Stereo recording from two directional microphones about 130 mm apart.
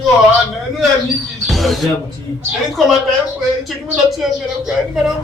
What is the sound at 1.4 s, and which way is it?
Basketball bounce, centre (ahead or behind).